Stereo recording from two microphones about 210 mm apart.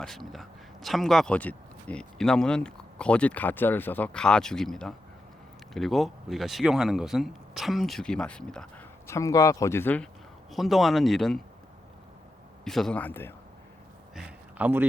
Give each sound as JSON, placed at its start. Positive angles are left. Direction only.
{"t": 0.0, "sound": "speech", "side_deg": 0}
{"t": 9.0, "sound": "speech", "side_deg": 15}
{"t": 12.6, "sound": "speech", "side_deg": 0}
{"t": 14.2, "sound": "a sound", "side_deg": -5}